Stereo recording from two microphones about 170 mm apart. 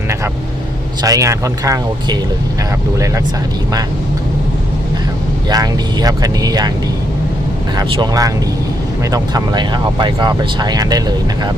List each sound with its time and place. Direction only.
1.0 s speech: 20° right (ahead or behind)
5.5 s speech: 20° right (ahead or behind)
7.8 s speech: 20° right (ahead or behind)